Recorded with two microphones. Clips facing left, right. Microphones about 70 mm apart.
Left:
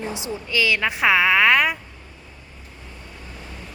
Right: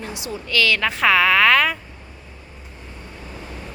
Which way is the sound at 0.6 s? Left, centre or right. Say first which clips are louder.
Right 1 dB; centre.